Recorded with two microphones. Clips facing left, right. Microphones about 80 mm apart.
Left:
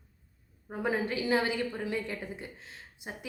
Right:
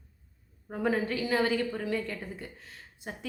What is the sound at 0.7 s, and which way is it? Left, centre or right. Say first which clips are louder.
A woman's voice: right 2 dB; centre.